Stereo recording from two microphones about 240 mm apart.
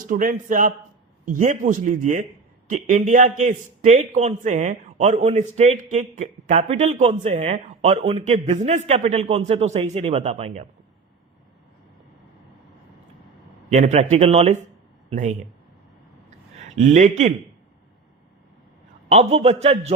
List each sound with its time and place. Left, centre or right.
0.0 s a man's voice: right
13.7 s a man's voice: right
16.6 s a man's voice: right
19.0 s a man's voice: right